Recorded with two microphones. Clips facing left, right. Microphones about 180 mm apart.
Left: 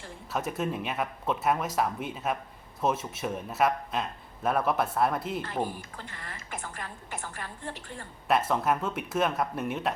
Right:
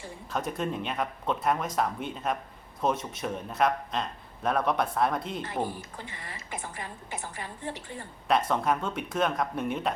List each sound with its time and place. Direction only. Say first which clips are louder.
0.3 s a man's voice: even; 5° left (ahead or behind)
5.6 s a woman's voice: right 1 dB; 15° right (ahead or behind)
8.3 s a man's voice: even; 5° left (ahead or behind)